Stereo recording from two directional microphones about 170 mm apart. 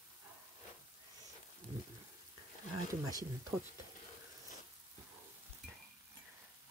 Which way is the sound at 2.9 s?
20° right (ahead or behind).